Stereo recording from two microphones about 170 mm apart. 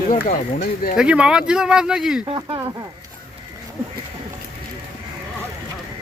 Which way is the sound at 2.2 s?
30° right (ahead or behind).